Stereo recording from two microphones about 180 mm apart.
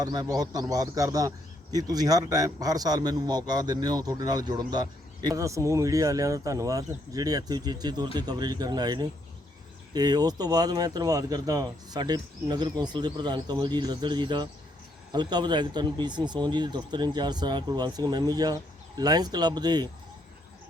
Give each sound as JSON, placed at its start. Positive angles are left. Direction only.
{"t": 0.0, "sound": "a man's voice", "side_deg": -20}